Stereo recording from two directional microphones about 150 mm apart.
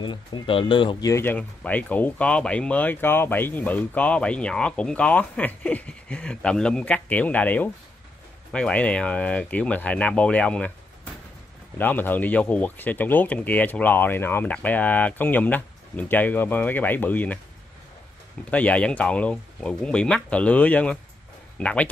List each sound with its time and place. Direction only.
0.0 s speech: 30° left (ahead or behind)
1.0 s speech: 15° left (ahead or behind)
11.8 s speech: 10° left (ahead or behind)
18.5 s speech: 10° left (ahead or behind)